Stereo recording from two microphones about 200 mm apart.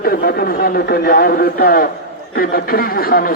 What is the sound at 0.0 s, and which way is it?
A man's voice, 50° left (ahead or behind).